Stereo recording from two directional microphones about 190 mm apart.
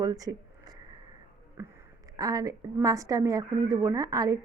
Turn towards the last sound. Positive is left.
turn(degrees=-20)  # may be behind; listen again after turning